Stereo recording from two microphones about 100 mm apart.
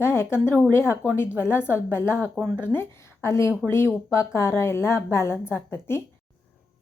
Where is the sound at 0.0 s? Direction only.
25° left (ahead or behind).